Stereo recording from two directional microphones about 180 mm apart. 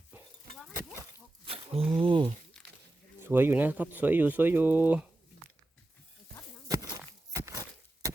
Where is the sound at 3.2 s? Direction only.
10° right (ahead or behind).